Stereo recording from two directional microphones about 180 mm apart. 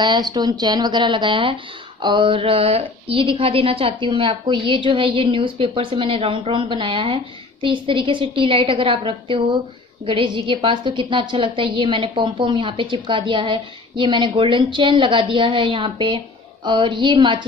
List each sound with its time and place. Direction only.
0.0 s speech: 25° right (ahead or behind)